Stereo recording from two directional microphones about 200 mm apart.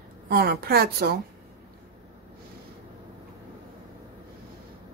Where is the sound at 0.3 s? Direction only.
50° right (ahead or behind).